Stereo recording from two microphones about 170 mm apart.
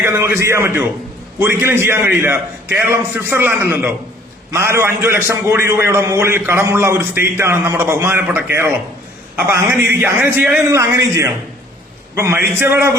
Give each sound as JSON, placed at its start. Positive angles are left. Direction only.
{"t": 0.0, "sound": "a man's voice", "side_deg": -15}
{"t": 10.7, "sound": "a man's voice", "side_deg": -20}